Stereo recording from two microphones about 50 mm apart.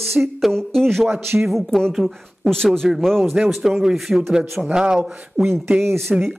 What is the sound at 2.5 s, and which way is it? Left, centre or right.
Speech, centre.